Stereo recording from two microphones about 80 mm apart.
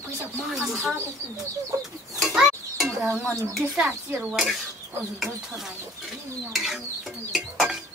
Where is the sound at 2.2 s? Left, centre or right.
Centre.